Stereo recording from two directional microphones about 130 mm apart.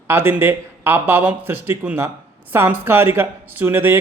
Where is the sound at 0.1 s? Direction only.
15° right (ahead or behind).